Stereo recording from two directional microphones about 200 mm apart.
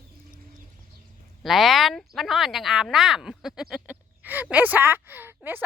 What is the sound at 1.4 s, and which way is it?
Speech, centre (ahead or behind).